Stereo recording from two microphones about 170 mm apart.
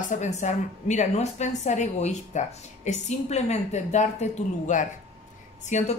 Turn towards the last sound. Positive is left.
turn(degrees=45)  # may be behind; listen again after turning